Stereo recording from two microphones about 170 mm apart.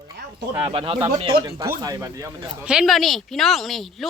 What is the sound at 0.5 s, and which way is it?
Speech, 30° right (ahead or behind).